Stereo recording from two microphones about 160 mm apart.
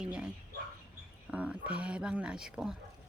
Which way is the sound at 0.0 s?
5° right (ahead or behind).